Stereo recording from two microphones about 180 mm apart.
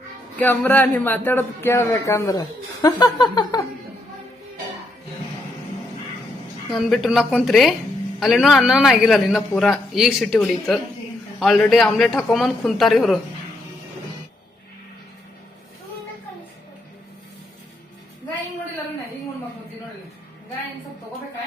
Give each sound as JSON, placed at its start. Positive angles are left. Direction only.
{"t": 0.3, "sound": "speech", "side_deg": 10}
{"t": 2.8, "sound": "a sound", "side_deg": 25}
{"t": 6.7, "sound": "a man's voice", "side_deg": 0}